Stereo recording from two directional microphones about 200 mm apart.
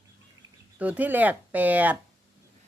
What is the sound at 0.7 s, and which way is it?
A woman's voice, 5° right (ahead or behind).